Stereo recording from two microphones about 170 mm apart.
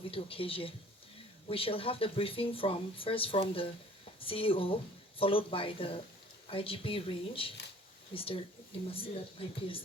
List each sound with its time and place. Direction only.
0.1 s speech: 35° left (ahead or behind)